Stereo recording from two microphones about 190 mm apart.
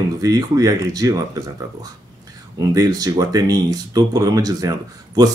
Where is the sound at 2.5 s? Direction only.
20° right (ahead or behind).